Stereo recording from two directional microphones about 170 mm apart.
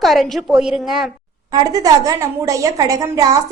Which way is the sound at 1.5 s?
20° right (ahead or behind).